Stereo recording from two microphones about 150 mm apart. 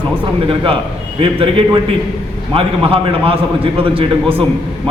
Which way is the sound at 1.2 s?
35° right (ahead or behind).